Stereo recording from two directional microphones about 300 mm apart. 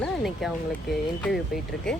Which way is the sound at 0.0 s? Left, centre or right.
Centre.